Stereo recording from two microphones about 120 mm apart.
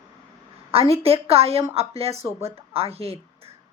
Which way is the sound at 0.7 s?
55° right (ahead or behind).